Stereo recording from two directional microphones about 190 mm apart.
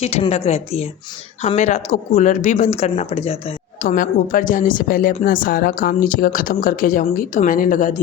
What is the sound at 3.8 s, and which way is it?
A woman's voice, 45° left (ahead or behind).